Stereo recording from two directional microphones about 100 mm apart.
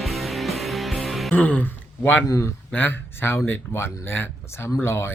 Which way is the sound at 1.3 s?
15° left (ahead or behind).